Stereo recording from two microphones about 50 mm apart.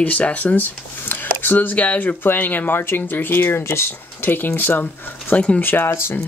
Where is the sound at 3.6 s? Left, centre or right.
Left.